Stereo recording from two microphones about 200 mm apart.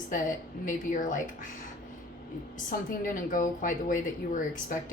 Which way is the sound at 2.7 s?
40° left (ahead or behind).